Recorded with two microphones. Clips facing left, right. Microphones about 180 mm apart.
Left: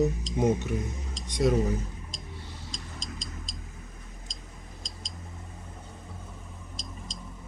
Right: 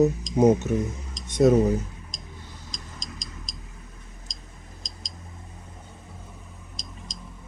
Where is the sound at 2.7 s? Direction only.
15° right (ahead or behind).